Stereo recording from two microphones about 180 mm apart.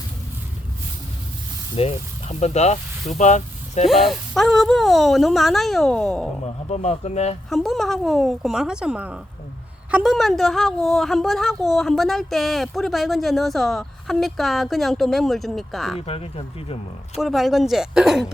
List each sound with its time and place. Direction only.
1.7 s speech: 35° left (ahead or behind)
3.8 s speech: centre (ahead or behind)
6.4 s speech: 35° left (ahead or behind)
7.5 s speech: centre (ahead or behind)
16.0 s speech: 35° left (ahead or behind)
17.2 s speech: centre (ahead or behind)